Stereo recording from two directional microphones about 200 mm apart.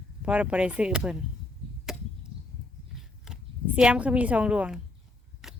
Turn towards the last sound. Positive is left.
turn(degrees=0)  # may be behind; listen again after turning